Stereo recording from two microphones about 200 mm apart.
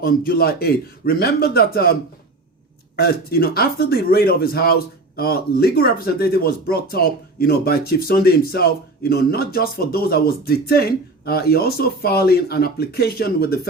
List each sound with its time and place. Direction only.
0.0 s speech: 45° left (ahead or behind)
2.9 s speech: 50° left (ahead or behind)